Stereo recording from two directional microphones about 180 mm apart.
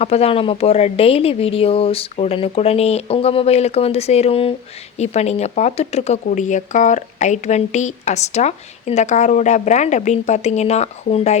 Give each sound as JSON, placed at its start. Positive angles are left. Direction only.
{"t": 0.0, "sound": "speech", "side_deg": 35}